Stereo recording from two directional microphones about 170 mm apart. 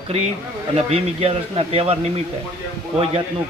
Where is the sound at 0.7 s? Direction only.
35° right (ahead or behind).